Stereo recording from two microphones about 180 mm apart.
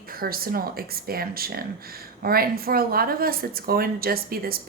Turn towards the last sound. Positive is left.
turn(degrees=-55)  # may be behind; listen again after turning